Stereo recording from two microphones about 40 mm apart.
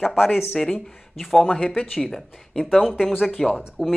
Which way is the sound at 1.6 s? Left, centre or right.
Centre.